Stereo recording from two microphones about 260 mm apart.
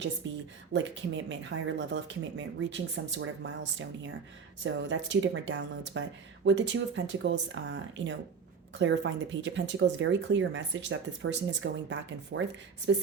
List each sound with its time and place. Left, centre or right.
0.2 s speech: right
4.6 s speech: right